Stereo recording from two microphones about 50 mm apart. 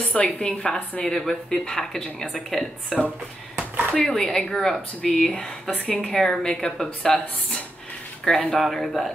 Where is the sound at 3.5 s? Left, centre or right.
Right.